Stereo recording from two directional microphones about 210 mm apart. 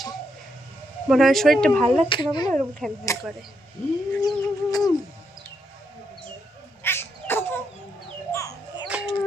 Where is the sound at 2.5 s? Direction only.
5° left (ahead or behind).